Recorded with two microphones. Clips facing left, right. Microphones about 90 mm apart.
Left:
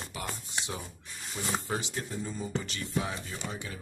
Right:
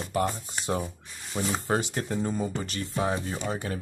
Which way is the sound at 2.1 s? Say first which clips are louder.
Right 11 dB; 60° right (ahead or behind).